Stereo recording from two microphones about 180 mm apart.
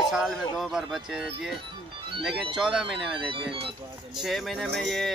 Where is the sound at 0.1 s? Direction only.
Centre (ahead or behind).